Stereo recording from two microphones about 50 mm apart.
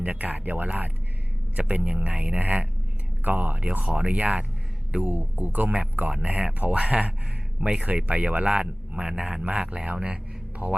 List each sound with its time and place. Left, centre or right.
0.0 s speech: right
3.7 s speech: right
7.9 s speech: right